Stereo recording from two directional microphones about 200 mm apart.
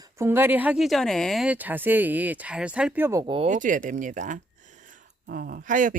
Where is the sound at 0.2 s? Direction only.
10° right (ahead or behind).